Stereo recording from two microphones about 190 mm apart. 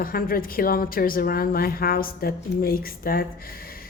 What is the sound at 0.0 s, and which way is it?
Speech, 50° left (ahead or behind).